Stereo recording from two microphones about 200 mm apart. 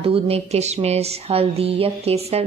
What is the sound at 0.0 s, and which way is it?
A woman's voice, 30° right (ahead or behind).